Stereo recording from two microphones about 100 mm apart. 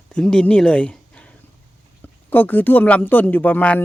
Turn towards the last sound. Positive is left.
turn(degrees=15)  # may be behind; listen again after turning